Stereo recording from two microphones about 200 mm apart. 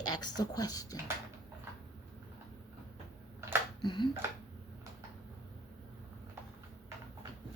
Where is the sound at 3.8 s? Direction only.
20° left (ahead or behind).